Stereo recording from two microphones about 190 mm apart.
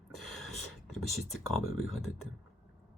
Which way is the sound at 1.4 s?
90° left.